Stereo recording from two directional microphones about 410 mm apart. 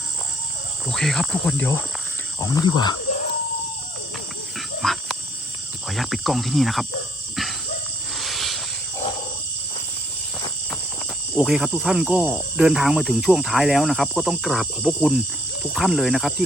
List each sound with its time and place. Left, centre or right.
0.9 s speech: centre
4.8 s wild animals: centre
5.9 s speech: centre
8.2 s snake: centre
11.3 s speech: centre